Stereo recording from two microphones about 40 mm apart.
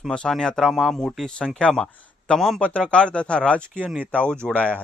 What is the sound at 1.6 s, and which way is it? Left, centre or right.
Speech, left.